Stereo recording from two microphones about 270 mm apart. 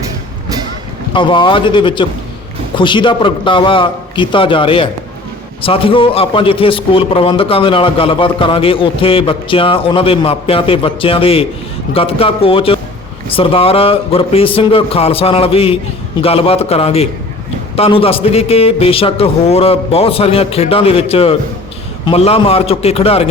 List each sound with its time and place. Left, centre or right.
1.1 s a man's voice: centre